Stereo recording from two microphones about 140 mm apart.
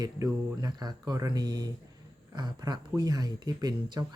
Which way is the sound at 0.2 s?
25° right (ahead or behind).